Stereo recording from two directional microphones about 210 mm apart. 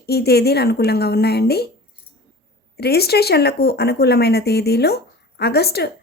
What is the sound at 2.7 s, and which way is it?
Speech, 50° left (ahead or behind).